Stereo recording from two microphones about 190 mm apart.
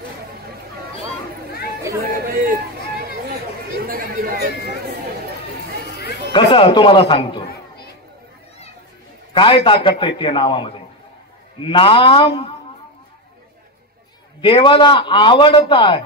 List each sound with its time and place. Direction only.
2.2 s run: 50° right (ahead or behind)
3.8 s chatter: 50° right (ahead or behind)
6.3 s a man's voice: 25° left (ahead or behind)
9.3 s a man's voice: 30° left (ahead or behind)
14.4 s a man's voice: 25° left (ahead or behind)